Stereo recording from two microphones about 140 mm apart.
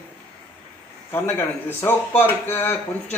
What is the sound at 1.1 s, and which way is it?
A man's voice, 15° left (ahead or behind).